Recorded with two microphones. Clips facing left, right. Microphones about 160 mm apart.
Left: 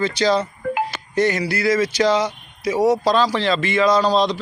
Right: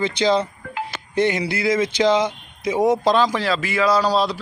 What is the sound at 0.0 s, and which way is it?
Speech, 15° right (ahead or behind).